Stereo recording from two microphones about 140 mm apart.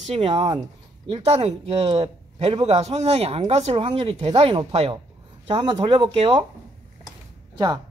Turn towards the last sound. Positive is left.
turn(degrees=-30)  # may be behind; listen again after turning